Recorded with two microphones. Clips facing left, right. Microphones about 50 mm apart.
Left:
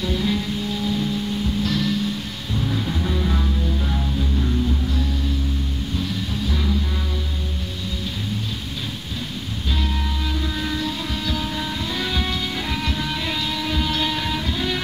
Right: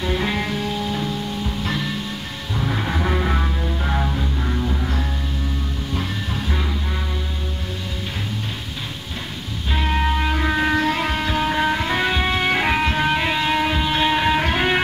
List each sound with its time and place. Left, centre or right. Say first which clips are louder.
0.0 s music: right 1 dB; right
1.6 s music: left 3 dB; right
2.5 s music: right 1 dB; right
9.8 s music: right 10 dB; right
12.4 s music: right 7 dB; right
14.4 s music: right 6 dB; right